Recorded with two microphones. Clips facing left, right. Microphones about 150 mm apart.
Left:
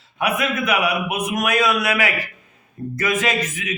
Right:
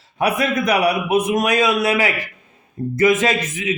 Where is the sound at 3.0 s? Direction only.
25° right (ahead or behind).